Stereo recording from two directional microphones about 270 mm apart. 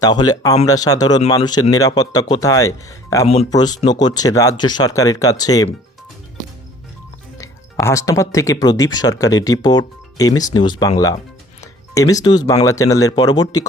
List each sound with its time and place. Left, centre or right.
0.0 s speech: centre
7.3 s speech: centre